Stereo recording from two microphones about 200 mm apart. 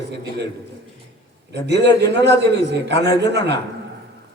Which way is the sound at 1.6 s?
60° right (ahead or behind).